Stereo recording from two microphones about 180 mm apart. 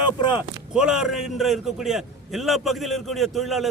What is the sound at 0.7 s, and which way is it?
A man's voice, 5° right (ahead or behind).